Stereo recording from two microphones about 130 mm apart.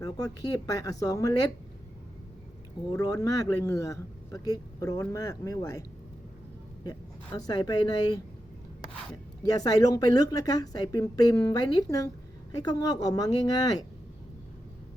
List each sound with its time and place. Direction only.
0.0 s a woman's voice: 30° left (ahead or behind)
2.9 s a woman's voice: 30° left (ahead or behind)
7.4 s a woman's voice: 30° left (ahead or behind)
9.5 s a woman's voice: 30° left (ahead or behind)